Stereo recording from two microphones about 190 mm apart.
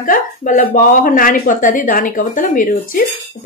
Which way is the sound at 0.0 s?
45° left (ahead or behind).